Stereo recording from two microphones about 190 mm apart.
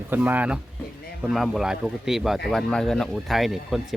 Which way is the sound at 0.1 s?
10° right (ahead or behind).